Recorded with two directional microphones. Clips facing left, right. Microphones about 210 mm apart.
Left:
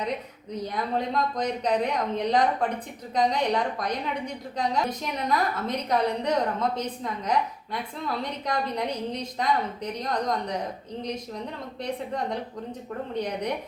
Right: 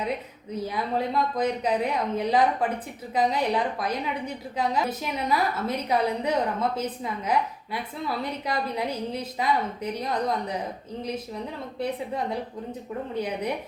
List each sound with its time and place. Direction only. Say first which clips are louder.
0.6 s a woman's voice: right 1 dB; 5° right (ahead or behind)
11.8 s speech: right 2 dB; 5° right (ahead or behind)